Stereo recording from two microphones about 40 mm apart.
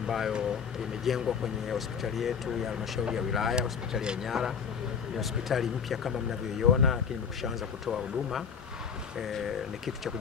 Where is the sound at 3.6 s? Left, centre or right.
Right.